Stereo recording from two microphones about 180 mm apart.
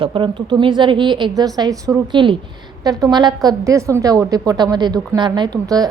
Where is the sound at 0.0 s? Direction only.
25° right (ahead or behind).